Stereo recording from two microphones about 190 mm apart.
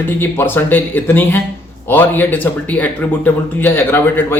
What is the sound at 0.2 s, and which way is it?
Speech, 10° left (ahead or behind).